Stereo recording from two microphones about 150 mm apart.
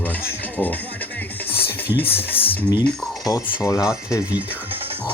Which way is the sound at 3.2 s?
25° left (ahead or behind).